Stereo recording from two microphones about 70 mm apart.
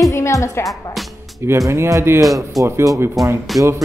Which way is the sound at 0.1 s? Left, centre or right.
Left.